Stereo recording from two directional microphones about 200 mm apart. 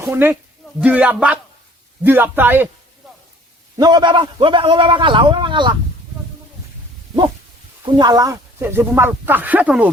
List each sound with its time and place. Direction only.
0.0 s speech: 10° right (ahead or behind)
3.8 s a man's voice: 20° right (ahead or behind)
7.9 s speech: 20° right (ahead or behind)